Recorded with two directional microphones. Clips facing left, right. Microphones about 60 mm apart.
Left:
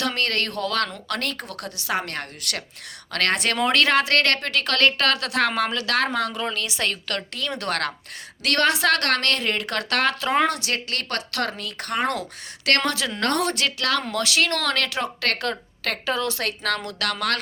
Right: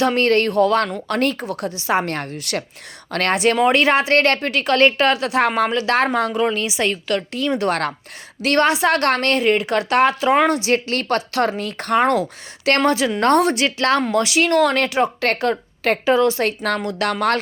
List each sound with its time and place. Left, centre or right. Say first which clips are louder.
0.0 s a woman's voice: right 9 dB; right
10.6 s a woman's voice: right 8 dB; right